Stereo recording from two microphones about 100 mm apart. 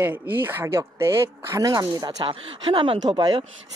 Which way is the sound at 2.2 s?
55° right (ahead or behind).